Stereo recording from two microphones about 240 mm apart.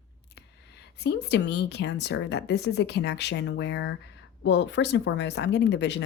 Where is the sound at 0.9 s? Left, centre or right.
Left.